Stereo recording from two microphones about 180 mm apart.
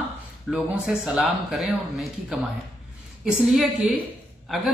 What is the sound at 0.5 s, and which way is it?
A woman's voice, centre (ahead or behind).